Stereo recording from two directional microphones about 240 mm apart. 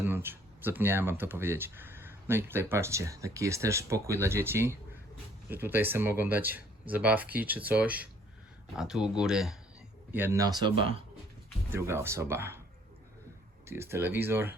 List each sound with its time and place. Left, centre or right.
0.0 s speech: centre
11.7 s speech: centre
13.7 s speech: centre